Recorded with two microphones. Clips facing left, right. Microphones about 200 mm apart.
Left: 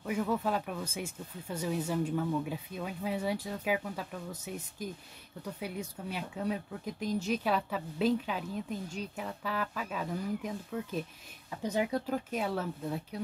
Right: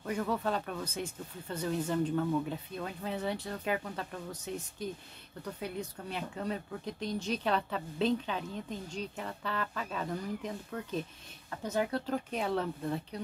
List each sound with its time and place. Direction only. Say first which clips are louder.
0.0 s speech: left 1 dB; 5° left (ahead or behind)
12.3 s speech: right 1 dB; 5° left (ahead or behind)